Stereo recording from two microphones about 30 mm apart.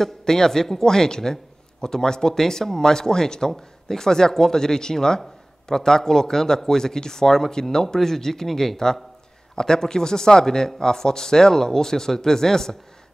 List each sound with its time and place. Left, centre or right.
0.2 s a man's voice: centre
9.6 s speech: left